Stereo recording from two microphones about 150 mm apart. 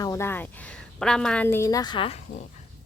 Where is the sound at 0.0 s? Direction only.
20° left (ahead or behind).